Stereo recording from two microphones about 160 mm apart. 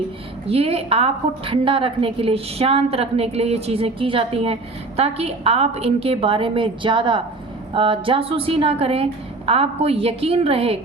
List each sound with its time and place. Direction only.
0.4 s a woman's voice: 35° right (ahead or behind)